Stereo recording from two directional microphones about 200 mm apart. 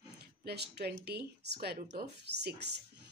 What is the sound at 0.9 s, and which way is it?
Speech, 55° right (ahead or behind).